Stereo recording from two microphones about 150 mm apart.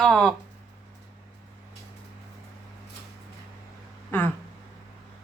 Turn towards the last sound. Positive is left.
turn(degrees=15)  # may be behind; listen again after turning